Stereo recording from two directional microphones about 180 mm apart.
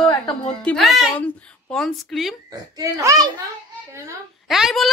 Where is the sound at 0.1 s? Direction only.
25° left (ahead or behind).